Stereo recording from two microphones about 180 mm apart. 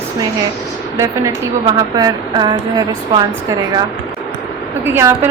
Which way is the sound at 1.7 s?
20° right (ahead or behind).